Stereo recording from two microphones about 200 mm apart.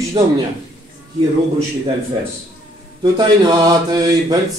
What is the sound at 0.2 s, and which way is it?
Mantra, 25° right (ahead or behind).